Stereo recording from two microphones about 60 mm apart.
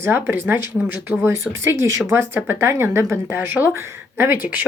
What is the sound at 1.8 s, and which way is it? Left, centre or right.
Speech, right.